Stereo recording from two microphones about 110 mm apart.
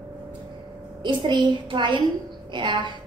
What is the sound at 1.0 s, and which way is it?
A woman's voice, 45° right (ahead or behind).